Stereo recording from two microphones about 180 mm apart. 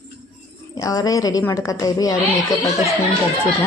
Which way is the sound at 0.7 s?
20° left (ahead or behind).